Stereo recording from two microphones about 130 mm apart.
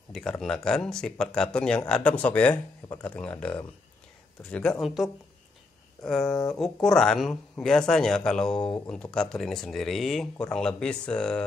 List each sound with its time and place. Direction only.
0.1 s speech: 5° left (ahead or behind)
6.3 s speech: 30° left (ahead or behind)
6.6 s speech: 5° left (ahead or behind)